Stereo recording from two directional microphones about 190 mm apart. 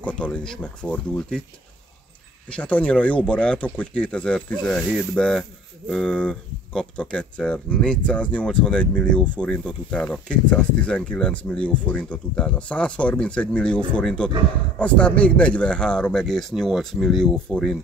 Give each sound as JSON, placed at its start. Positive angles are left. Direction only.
{"t": 0.0, "sound": "speech", "side_deg": 5}
{"t": 2.5, "sound": "speech", "side_deg": 5}